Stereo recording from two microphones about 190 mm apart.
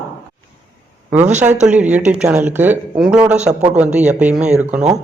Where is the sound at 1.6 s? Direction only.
5° right (ahead or behind).